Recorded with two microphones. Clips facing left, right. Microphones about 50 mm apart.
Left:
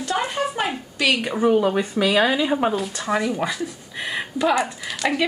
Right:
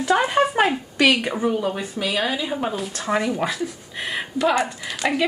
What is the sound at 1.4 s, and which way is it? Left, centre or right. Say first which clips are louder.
Speech: left 4 dB; left.